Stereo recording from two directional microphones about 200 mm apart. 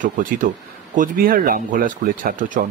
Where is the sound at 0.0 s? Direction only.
40° right (ahead or behind).